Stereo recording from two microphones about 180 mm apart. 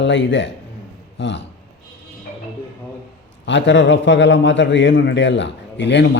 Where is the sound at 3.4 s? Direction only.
90° left.